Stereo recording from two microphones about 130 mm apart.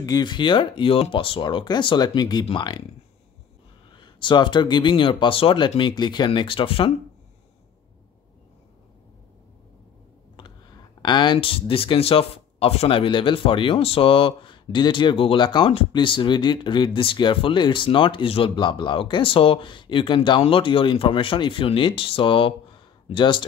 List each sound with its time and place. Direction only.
0.0 s speech: 30° left (ahead or behind)
3.9 s speech: 40° left (ahead or behind)
11.0 s speech: 35° left (ahead or behind)